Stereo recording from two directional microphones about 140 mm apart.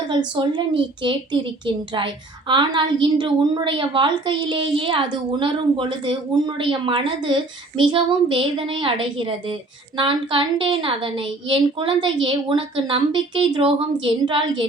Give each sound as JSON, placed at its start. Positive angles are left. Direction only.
{"t": 0.3, "sound": "a woman's voice", "side_deg": -35}